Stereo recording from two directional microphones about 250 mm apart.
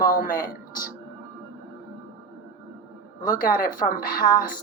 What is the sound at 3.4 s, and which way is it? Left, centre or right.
Speech, left.